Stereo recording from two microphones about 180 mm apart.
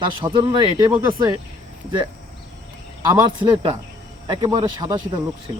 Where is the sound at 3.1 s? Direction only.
20° right (ahead or behind).